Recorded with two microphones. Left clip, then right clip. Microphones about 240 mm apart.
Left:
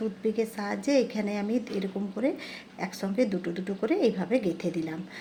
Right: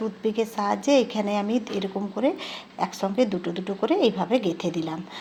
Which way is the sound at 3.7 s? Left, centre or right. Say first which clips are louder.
Right 5 dB; right.